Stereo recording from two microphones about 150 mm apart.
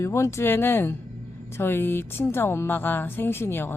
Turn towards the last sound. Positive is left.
turn(degrees=15)  # may be behind; listen again after turning